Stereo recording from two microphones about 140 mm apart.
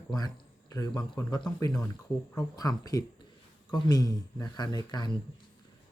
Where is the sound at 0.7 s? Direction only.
30° left (ahead or behind).